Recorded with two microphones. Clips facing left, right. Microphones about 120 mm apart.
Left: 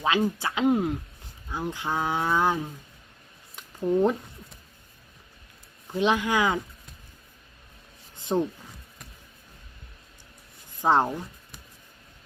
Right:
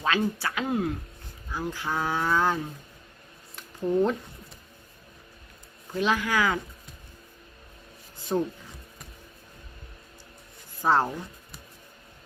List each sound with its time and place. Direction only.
0.0 s cattle: 15° left (ahead or behind)
3.9 s cattle: 15° left (ahead or behind)
5.9 s speech: 20° left (ahead or behind)
8.1 s a sound: 20° left (ahead or behind)
10.8 s speech: 20° left (ahead or behind)